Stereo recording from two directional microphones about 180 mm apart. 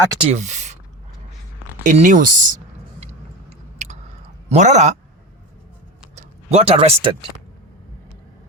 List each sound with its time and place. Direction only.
0.2 s speech: 35° right (ahead or behind)
1.8 s speech: 45° right (ahead or behind)
4.4 s speech: 40° right (ahead or behind)
6.1 s speech: 35° right (ahead or behind)